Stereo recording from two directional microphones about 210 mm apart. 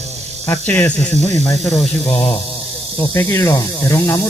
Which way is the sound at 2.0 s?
30° left (ahead or behind).